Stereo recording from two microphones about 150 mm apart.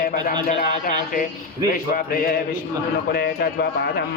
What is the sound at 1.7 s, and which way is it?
Speech, 75° left (ahead or behind).